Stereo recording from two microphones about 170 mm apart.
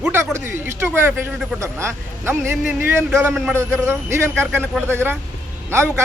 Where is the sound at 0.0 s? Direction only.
15° right (ahead or behind).